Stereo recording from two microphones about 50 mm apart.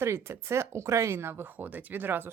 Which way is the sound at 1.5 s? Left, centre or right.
Right.